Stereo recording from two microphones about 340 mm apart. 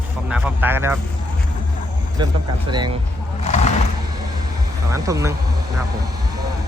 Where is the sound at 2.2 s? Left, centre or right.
Centre.